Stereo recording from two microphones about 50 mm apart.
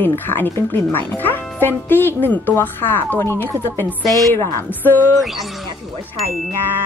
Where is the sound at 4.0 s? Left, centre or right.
Centre.